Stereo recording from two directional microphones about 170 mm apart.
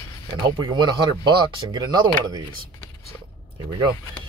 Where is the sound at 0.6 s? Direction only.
25° right (ahead or behind).